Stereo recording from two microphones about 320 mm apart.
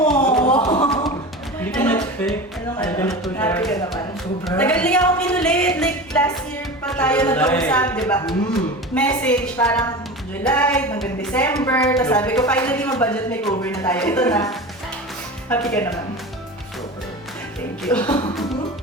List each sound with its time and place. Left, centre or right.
0.0 s music: centre
2.7 s a woman's voice: centre
17.8 s a woman's voice: centre